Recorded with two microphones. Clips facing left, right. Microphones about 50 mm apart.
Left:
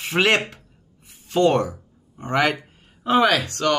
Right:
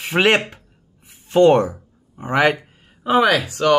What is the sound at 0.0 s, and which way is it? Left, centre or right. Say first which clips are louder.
Speech: right 3 dB; centre.